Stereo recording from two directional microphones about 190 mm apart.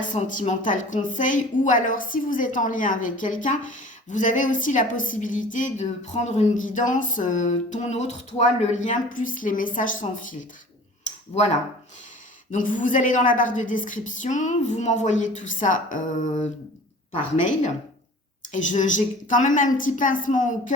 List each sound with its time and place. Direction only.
0.0 s a woman's voice: 40° left (ahead or behind)
12.5 s a woman's voice: 45° left (ahead or behind)